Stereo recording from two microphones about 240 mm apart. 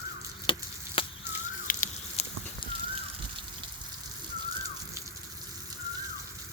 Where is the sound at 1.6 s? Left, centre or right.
Left.